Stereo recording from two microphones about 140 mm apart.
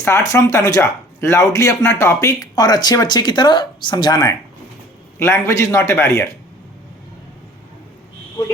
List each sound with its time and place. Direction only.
0.0 s speech: 20° left (ahead or behind)